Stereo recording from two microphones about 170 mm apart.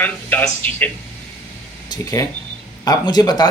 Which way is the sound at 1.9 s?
20° left (ahead or behind).